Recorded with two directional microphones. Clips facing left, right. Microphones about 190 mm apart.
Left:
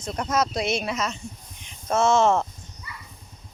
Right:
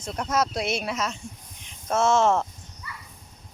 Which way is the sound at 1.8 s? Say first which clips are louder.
Left 1 dB; 5° right (ahead or behind).